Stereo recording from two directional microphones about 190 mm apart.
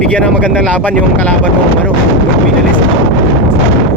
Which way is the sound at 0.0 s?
5° left (ahead or behind).